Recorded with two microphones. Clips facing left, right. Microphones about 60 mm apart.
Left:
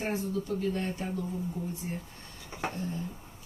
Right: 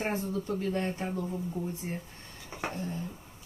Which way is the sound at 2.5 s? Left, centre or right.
Centre.